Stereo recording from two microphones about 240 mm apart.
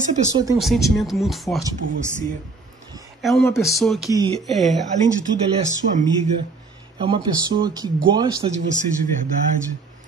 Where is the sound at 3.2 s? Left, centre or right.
Centre.